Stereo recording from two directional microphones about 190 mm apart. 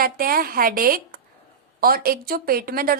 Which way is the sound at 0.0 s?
50° right (ahead or behind).